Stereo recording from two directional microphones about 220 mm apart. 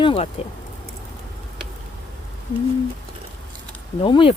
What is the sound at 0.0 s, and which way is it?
Speech, 25° left (ahead or behind).